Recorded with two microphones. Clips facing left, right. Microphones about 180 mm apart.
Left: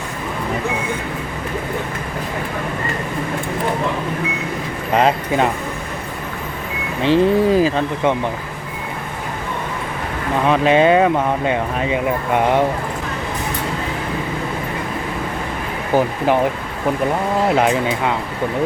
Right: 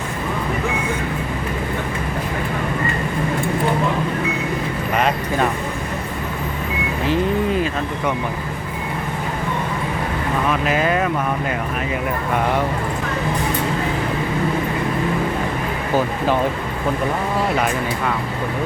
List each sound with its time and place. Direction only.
4.9 s speech: 25° left (ahead or behind)
7.0 s speech: 30° left (ahead or behind)
10.5 s speech: 25° left (ahead or behind)
16.0 s speech: 15° left (ahead or behind)